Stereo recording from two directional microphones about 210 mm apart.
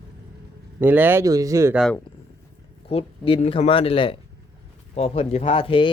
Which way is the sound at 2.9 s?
25° left (ahead or behind).